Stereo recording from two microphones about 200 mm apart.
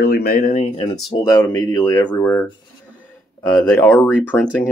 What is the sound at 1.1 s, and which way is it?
Speech, 15° left (ahead or behind).